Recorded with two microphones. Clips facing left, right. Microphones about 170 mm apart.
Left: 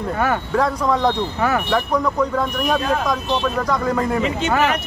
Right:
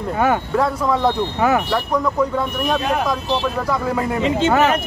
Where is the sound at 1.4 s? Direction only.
15° right (ahead or behind).